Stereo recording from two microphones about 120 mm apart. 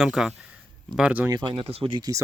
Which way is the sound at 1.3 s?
40° right (ahead or behind).